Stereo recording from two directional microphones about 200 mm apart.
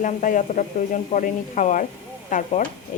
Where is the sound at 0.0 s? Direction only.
40° left (ahead or behind).